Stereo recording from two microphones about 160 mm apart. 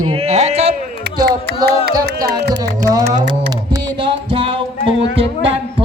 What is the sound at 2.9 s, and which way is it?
Speech, 20° right (ahead or behind).